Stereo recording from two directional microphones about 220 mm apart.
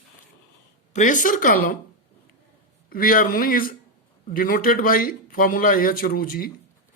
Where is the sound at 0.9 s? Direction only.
35° left (ahead or behind).